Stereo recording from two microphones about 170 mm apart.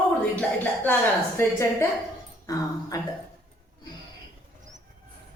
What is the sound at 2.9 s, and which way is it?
Speech, 25° left (ahead or behind).